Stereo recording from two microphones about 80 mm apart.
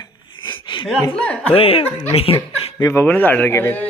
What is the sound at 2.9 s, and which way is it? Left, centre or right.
Speech, left.